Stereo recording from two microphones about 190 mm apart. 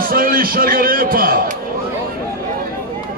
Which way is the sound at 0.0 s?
50° right (ahead or behind).